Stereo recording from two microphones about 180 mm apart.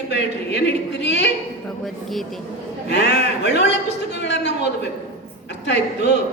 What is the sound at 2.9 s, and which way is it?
A man's voice, 70° left (ahead or behind).